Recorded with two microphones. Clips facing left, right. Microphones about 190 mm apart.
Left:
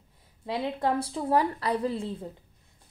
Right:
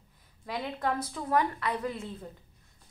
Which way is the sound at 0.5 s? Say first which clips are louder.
Left 4 dB; 30° left (ahead or behind).